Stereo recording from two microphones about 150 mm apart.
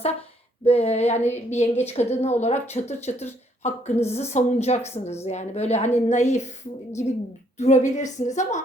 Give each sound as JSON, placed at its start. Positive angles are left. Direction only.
{"t": 0.6, "sound": "a woman's voice", "side_deg": 45}
{"t": 7.6, "sound": "a woman's voice", "side_deg": 55}